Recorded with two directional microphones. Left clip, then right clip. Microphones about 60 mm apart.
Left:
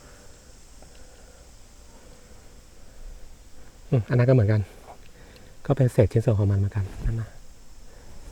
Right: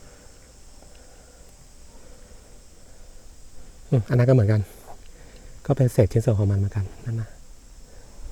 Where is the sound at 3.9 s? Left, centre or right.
Right.